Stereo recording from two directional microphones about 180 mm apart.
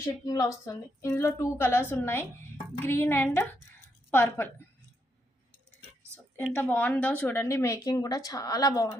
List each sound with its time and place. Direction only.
0.0 s speech: 20° left (ahead or behind)
6.6 s speech: 10° left (ahead or behind)